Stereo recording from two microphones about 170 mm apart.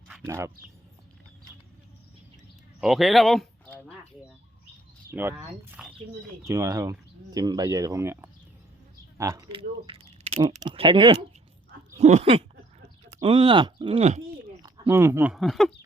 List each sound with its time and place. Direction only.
0.1 s speech: 15° right (ahead or behind)
2.8 s speech: centre (ahead or behind)
5.1 s speech: 10° right (ahead or behind)
9.5 s speech: 30° right (ahead or behind)
11.9 s a sound: 40° right (ahead or behind)
13.2 s speech: 30° right (ahead or behind)
14.6 s a sound: 15° right (ahead or behind)
15.3 s speech: centre (ahead or behind)